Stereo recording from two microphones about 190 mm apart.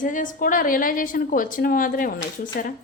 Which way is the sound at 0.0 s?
45° left (ahead or behind).